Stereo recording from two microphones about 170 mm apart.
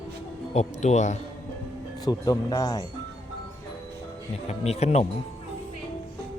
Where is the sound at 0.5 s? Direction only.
45° left (ahead or behind).